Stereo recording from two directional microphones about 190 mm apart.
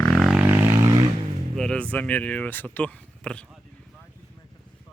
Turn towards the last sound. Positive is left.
turn(degrees=5)  # may be behind; listen again after turning